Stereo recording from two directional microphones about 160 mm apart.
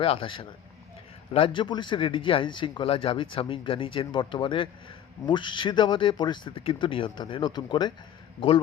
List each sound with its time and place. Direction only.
0.0 s speech: 35° left (ahead or behind)